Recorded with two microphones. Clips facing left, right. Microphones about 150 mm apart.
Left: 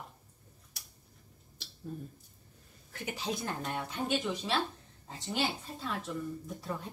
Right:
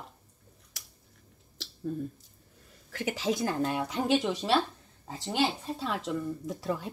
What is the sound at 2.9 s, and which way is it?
Speech, 90° right.